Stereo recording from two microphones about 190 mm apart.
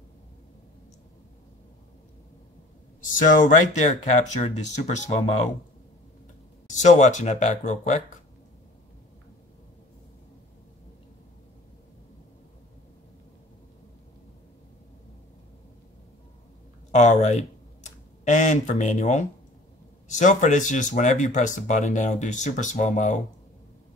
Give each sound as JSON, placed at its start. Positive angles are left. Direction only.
{"t": 3.0, "sound": "speech", "side_deg": 45}
{"t": 6.7, "sound": "speech", "side_deg": 40}
{"t": 16.9, "sound": "speech", "side_deg": 40}